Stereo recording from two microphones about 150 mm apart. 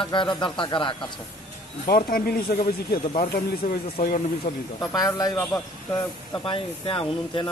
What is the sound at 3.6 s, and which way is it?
Speech, 75° left (ahead or behind).